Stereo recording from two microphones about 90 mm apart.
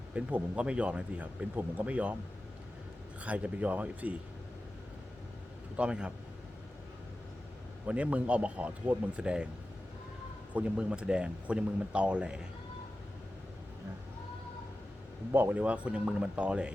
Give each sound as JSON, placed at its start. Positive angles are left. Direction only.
{"t": 0.1, "sound": "speech", "side_deg": -15}
{"t": 3.2, "sound": "speech", "side_deg": -15}
{"t": 5.7, "sound": "speech", "side_deg": -10}
{"t": 7.9, "sound": "speech", "side_deg": -15}
{"t": 10.5, "sound": "speech", "side_deg": -15}
{"t": 15.3, "sound": "speech", "side_deg": -25}